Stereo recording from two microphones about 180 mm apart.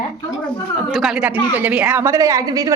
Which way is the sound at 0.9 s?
Centre (ahead or behind).